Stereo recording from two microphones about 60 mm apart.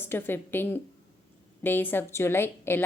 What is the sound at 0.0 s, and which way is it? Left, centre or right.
Speech, left.